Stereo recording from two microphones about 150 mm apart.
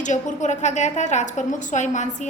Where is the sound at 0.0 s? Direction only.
55° left (ahead or behind).